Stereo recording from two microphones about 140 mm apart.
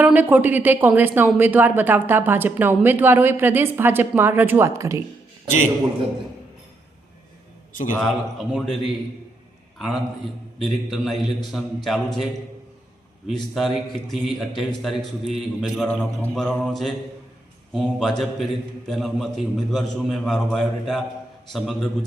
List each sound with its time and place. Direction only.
0.0 s speech: 10° right (ahead or behind)
7.7 s a man's voice: 70° left (ahead or behind)
8.0 s a man's voice: centre (ahead or behind)